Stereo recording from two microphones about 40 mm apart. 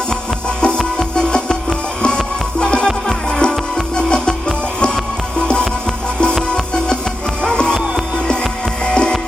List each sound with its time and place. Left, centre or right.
0.6 s music: left
6.5 s music: left
8.8 s music: left